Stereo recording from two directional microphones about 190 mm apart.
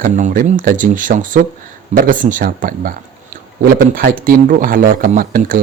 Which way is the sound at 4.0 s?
50° right (ahead or behind).